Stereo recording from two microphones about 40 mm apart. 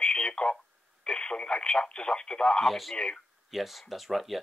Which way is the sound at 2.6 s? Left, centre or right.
Centre.